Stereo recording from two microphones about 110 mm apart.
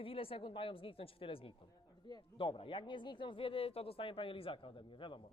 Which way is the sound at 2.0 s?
45° left (ahead or behind).